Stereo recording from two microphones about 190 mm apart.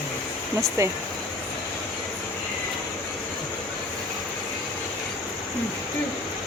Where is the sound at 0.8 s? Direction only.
15° right (ahead or behind).